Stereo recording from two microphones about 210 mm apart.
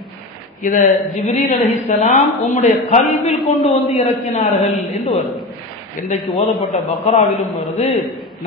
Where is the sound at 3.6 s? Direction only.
30° left (ahead or behind).